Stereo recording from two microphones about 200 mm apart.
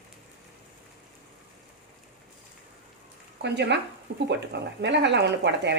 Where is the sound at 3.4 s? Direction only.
60° right (ahead or behind).